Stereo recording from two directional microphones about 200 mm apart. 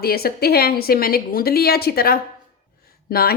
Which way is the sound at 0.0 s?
50° left (ahead or behind).